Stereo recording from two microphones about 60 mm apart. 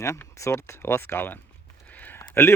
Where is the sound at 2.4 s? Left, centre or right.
Left.